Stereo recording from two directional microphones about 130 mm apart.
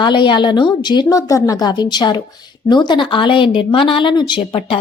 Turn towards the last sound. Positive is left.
turn(degrees=40)  # may be behind; listen again after turning